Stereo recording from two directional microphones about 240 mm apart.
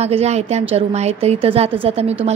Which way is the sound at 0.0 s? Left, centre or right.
Right.